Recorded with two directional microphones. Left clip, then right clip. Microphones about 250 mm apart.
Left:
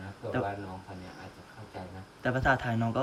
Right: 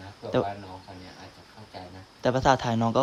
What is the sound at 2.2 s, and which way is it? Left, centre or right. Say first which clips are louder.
Speech: right 5 dB; centre.